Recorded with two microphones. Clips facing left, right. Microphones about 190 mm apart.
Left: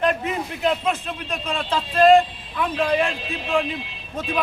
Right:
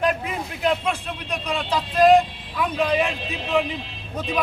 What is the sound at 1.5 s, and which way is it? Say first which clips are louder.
Speech: even; 15° right (ahead or behind).